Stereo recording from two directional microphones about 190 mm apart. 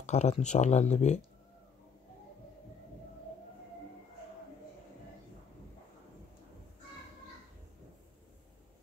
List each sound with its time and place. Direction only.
0.0 s speech: 35° left (ahead or behind)